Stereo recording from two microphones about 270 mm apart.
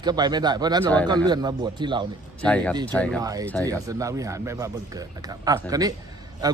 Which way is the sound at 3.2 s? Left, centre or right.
Centre.